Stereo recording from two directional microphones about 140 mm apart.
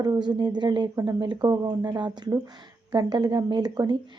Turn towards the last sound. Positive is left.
turn(degrees=-30)  # may be behind; listen again after turning